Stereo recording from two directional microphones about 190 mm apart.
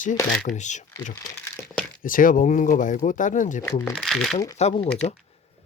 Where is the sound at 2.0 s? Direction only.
45° left (ahead or behind).